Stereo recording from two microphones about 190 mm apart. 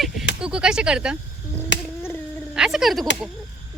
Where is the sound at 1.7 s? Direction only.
70° left (ahead or behind).